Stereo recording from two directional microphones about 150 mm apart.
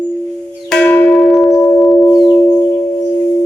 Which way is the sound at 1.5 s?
10° left (ahead or behind).